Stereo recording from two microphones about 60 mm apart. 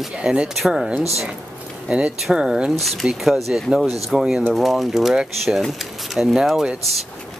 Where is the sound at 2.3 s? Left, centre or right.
Centre.